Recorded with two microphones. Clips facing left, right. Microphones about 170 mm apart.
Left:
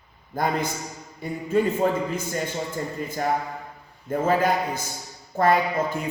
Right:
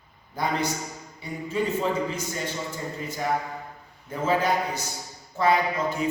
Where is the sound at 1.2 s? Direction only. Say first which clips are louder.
Left 5 dB; 50° left (ahead or behind).